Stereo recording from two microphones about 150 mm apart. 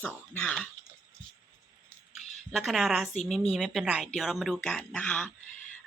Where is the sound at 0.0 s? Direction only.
10° left (ahead or behind).